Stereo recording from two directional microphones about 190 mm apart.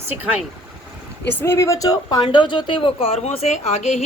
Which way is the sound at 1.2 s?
10° left (ahead or behind).